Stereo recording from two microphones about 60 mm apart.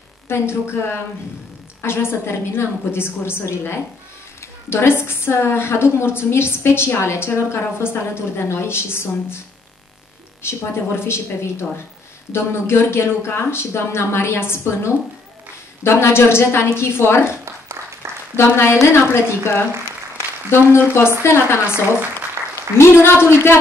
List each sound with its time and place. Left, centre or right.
0.3 s a woman's voice: left
10.4 s a woman's voice: left
20.7 s a woman's voice: left